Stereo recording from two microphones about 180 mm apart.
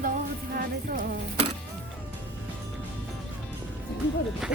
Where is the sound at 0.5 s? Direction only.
50° right (ahead or behind).